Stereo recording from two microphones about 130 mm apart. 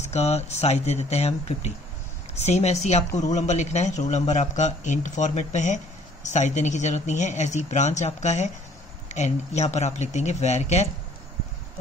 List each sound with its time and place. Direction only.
0.0 s speech: 55° left (ahead or behind)